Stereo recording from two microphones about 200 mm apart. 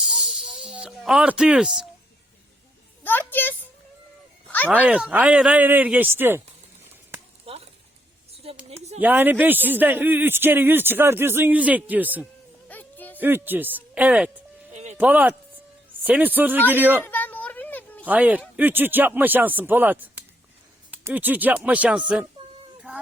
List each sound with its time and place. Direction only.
0.0 s a sound: centre (ahead or behind)
3.0 s a sound: 10° left (ahead or behind)
4.7 s a man's voice: 5° right (ahead or behind)
7.4 s a sound: 30° right (ahead or behind)
8.3 s speech: 30° right (ahead or behind)
9.0 s a man's voice: 10° right (ahead or behind)
12.6 s music: 10° left (ahead or behind)
13.1 s a man's voice: 10° right (ahead or behind)
14.7 s music: 35° right (ahead or behind)
14.9 s a man's voice: 10° right (ahead or behind)
17.0 s a sound: 10° left (ahead or behind)
18.0 s a man's voice: 10° right (ahead or behind)